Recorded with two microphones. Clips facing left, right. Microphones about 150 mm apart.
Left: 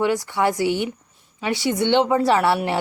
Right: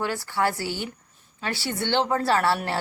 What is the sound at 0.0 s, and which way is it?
A woman's voice, 20° left (ahead or behind).